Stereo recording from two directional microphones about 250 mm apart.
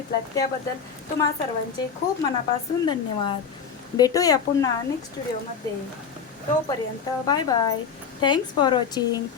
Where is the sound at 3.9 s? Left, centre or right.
Centre.